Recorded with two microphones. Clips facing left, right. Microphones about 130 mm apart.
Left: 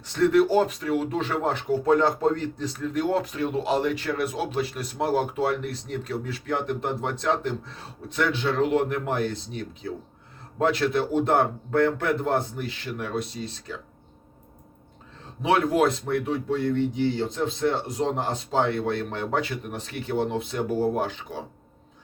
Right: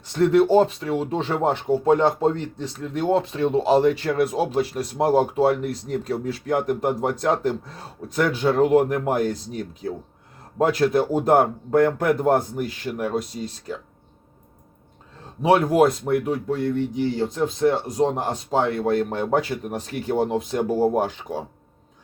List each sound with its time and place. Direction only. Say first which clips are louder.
0.2 s speech: right 3 dB; 30° right (ahead or behind)
15.4 s speech: right 4 dB; 40° right (ahead or behind)